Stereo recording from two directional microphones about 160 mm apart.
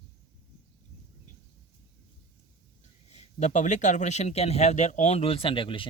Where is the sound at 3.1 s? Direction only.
45° left (ahead or behind).